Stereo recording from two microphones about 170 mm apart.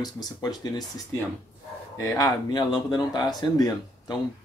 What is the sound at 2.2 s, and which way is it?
Speech, 25° left (ahead or behind).